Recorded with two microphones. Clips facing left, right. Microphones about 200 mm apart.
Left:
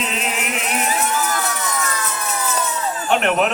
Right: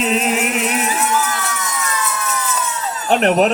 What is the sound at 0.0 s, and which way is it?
Speech, 40° right (ahead or behind).